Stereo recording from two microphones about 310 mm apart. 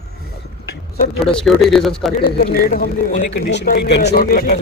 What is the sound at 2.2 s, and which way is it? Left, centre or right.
Speech, left.